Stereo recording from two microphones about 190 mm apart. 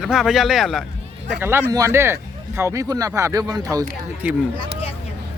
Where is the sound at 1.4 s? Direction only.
10° right (ahead or behind).